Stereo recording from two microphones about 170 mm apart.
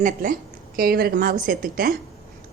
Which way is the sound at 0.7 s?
65° right (ahead or behind).